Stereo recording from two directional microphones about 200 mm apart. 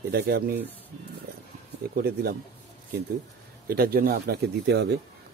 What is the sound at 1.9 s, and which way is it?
Speech, 50° right (ahead or behind).